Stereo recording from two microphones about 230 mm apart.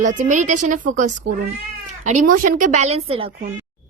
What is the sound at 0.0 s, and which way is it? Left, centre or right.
Speech, right.